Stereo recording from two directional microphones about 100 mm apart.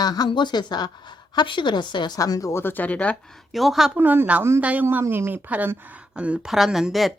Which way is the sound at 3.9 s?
20° right (ahead or behind).